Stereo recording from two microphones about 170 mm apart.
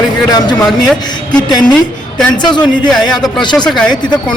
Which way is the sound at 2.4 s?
25° left (ahead or behind).